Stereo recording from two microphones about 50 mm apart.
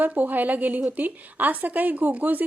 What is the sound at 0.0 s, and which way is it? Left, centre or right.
A woman's voice, right.